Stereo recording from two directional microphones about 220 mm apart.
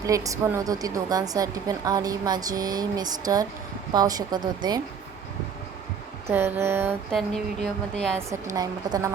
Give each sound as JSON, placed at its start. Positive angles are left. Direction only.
{"t": 0.0, "sound": "a woman's voice", "side_deg": -15}
{"t": 6.2, "sound": "a woman's voice", "side_deg": -10}
{"t": 7.1, "sound": "a woman's voice", "side_deg": 0}
{"t": 8.5, "sound": "a woman's voice", "side_deg": -15}